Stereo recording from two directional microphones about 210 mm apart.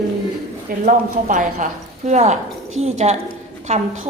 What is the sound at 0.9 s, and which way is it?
A woman's voice, 40° right (ahead or behind).